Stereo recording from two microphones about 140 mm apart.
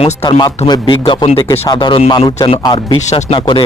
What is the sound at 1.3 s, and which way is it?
Speech, 45° left (ahead or behind).